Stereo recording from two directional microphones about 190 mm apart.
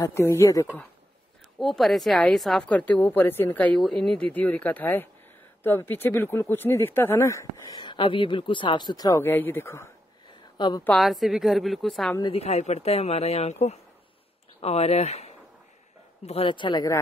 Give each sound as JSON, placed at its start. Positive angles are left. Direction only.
{"t": 0.0, "sound": "speech", "side_deg": 15}
{"t": 1.6, "sound": "speech", "side_deg": 0}
{"t": 10.2, "sound": "a sound", "side_deg": 25}
{"t": 10.8, "sound": "a woman's voice", "side_deg": 5}
{"t": 12.2, "sound": "a man's voice", "side_deg": 30}